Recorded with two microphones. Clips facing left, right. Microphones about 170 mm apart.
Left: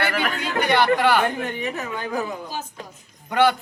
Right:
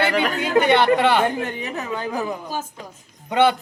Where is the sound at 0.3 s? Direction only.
25° right (ahead or behind).